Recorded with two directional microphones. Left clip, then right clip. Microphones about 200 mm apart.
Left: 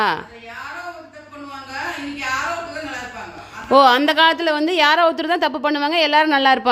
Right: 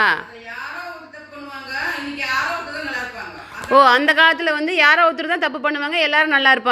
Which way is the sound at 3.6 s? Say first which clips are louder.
Even; 25° left (ahead or behind).